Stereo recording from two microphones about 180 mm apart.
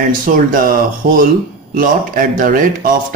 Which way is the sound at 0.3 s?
50° right (ahead or behind).